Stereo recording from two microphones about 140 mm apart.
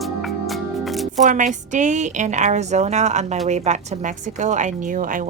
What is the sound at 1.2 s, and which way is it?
A woman's voice, 65° right (ahead or behind).